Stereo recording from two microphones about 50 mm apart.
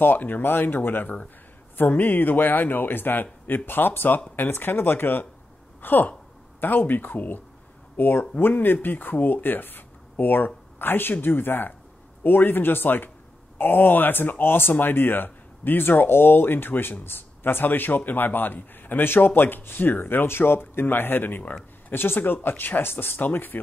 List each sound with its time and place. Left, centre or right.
0.0 s a man's voice: left
5.8 s a sound: left
6.6 s a man's voice: left